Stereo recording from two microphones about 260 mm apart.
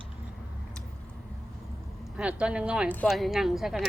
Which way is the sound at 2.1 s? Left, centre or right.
Centre.